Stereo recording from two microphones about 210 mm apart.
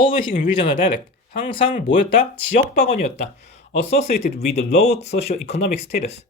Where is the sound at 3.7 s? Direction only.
30° left (ahead or behind).